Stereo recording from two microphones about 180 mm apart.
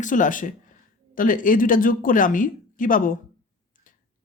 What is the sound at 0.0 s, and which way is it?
Speech, 45° left (ahead or behind).